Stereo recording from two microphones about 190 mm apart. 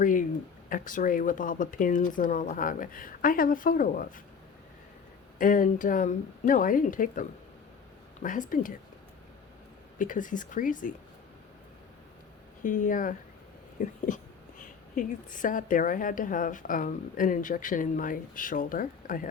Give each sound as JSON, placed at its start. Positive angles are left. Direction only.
{"t": 0.0, "sound": "a woman's voice", "side_deg": 45}
{"t": 5.4, "sound": "a woman's voice", "side_deg": 45}
{"t": 10.0, "sound": "a woman's voice", "side_deg": 45}
{"t": 12.6, "sound": "a woman's voice", "side_deg": 45}